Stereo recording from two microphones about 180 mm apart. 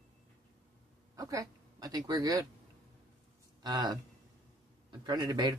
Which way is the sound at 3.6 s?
20° right (ahead or behind).